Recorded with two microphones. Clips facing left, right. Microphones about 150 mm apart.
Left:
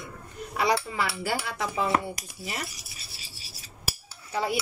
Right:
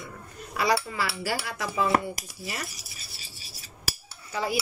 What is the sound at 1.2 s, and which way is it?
Cutlery, 25° left (ahead or behind).